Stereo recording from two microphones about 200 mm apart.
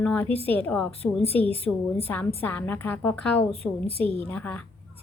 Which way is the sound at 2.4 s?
10° left (ahead or behind).